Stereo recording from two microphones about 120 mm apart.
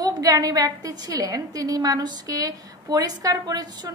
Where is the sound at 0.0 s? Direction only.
30° right (ahead or behind).